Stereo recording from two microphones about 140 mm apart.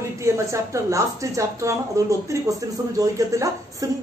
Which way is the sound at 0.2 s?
20° right (ahead or behind).